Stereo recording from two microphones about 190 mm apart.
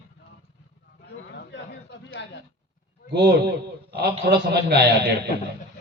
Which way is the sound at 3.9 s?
60° right (ahead or behind).